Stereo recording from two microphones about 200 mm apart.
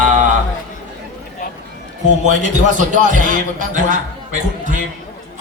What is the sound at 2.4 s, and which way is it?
A man's voice, 40° right (ahead or behind).